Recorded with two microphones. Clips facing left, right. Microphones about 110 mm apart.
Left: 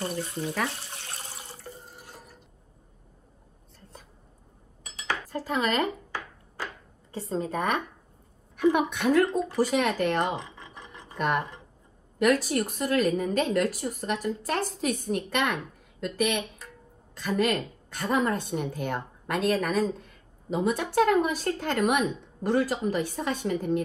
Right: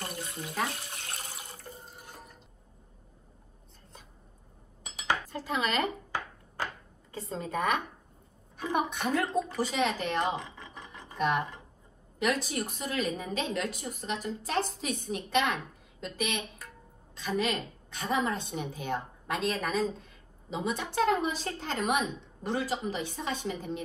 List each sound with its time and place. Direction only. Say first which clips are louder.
0.0 s speech: left 7 dB; 35° left (ahead or behind)
1.0 s water: left 1 dB; 30° left (ahead or behind)
5.3 s a woman's voice: left 4 dB; 40° left (ahead or behind)
7.1 s a woman's voice: left 6 dB; 35° left (ahead or behind)
8.5 s a woman's voice: left 7 dB; 65° left (ahead or behind)